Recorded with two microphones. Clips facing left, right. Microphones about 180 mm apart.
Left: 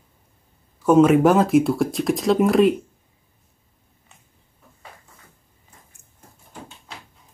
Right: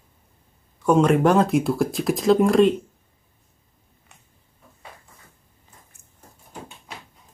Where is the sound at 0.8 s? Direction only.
5° left (ahead or behind).